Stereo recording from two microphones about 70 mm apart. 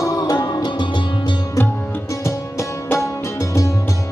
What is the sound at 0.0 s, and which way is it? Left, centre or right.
Music, left.